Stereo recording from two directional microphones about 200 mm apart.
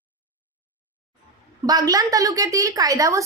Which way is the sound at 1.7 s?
20° right (ahead or behind).